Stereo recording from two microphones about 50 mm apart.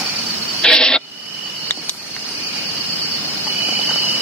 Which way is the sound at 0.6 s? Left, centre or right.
Centre.